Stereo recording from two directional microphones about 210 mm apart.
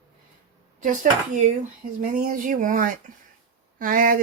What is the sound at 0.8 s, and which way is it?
Speech, 40° right (ahead or behind).